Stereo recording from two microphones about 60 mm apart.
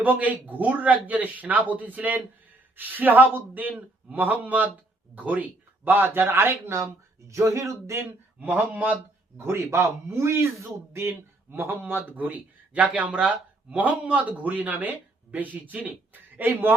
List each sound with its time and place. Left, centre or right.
0.0 s speech: right
7.3 s a man's voice: right
8.4 s speech: right
9.7 s a man's voice: right
11.5 s speech: right